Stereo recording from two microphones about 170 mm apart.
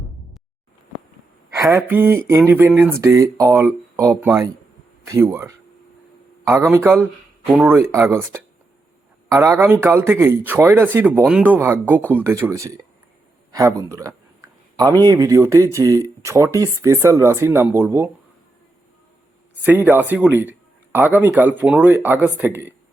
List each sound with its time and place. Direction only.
1.5 s a man's voice: 15° right (ahead or behind)
19.6 s a man's voice: 10° right (ahead or behind)